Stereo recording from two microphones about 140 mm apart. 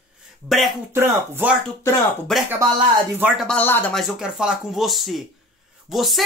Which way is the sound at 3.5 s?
15° left (ahead or behind).